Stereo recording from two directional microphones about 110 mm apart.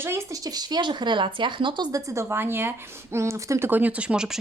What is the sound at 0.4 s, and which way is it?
Speech, 40° right (ahead or behind).